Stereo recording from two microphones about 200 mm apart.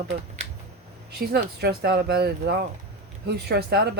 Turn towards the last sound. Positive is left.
turn(degrees=-55)  # may be behind; listen again after turning